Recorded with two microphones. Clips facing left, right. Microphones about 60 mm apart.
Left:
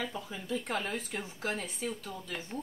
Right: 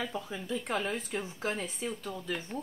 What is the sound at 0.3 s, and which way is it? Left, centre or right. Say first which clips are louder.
Speech: even; right.